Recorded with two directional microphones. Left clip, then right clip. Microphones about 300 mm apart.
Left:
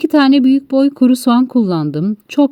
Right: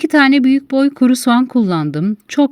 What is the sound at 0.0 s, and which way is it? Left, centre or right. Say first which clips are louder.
A woman's voice: even; right.